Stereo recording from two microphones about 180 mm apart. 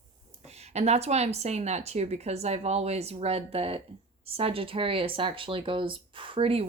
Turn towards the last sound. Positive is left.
turn(degrees=-30)  # may be behind; listen again after turning